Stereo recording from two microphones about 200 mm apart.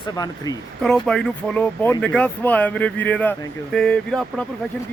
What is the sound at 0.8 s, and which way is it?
Speech, centre (ahead or behind).